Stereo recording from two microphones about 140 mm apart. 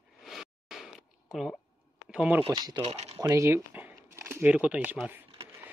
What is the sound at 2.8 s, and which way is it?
Speech, 45° right (ahead or behind).